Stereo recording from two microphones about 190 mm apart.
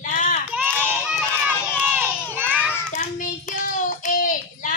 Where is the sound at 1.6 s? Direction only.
5° right (ahead or behind).